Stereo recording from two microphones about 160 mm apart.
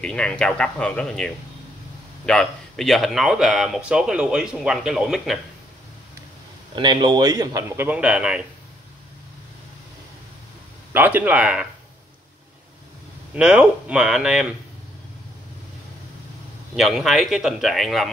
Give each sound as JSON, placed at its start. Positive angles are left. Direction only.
{"t": 0.0, "sound": "speech", "side_deg": 5}
{"t": 6.7, "sound": "speech", "side_deg": -30}
{"t": 7.7, "sound": "speech", "side_deg": -10}
{"t": 10.9, "sound": "speech", "side_deg": -10}
{"t": 13.3, "sound": "speech", "side_deg": -10}
{"t": 16.7, "sound": "speech", "side_deg": 0}